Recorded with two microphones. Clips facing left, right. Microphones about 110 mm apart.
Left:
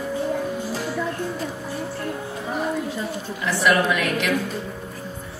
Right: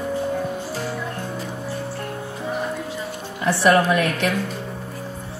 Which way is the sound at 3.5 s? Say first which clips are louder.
Right 3 dB; 35° right (ahead or behind).